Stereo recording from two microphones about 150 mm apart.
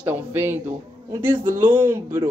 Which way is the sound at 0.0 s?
10° right (ahead or behind).